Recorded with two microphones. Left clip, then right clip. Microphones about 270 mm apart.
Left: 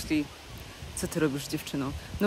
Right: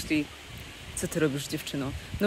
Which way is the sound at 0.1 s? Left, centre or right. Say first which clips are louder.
Right 1 dB; centre.